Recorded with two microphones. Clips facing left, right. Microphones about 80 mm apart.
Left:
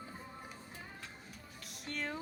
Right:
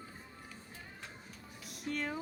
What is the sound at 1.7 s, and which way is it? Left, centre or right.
Speech, centre.